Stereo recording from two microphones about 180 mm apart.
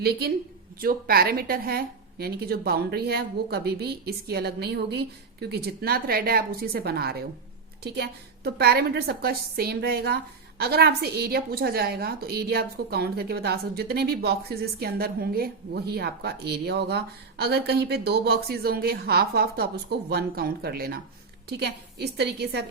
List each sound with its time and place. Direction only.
0.8 s a woman's voice: 55° right (ahead or behind)